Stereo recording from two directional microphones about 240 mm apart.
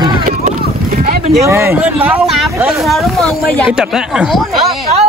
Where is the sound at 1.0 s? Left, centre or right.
Right.